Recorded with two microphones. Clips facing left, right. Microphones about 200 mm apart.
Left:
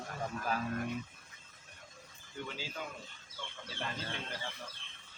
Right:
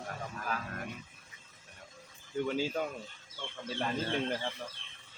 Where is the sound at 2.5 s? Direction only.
50° right (ahead or behind).